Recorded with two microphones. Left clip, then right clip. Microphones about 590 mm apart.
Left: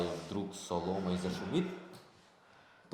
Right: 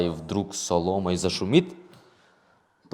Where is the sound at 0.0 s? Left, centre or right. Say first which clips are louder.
Right 10 dB; right.